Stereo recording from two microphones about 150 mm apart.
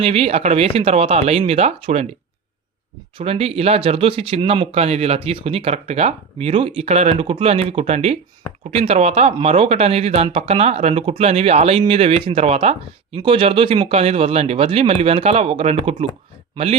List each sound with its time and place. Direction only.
0.0 s speech: 40° right (ahead or behind)
3.2 s speech: 40° right (ahead or behind)